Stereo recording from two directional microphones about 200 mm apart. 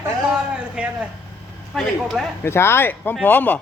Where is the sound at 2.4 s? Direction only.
10° left (ahead or behind).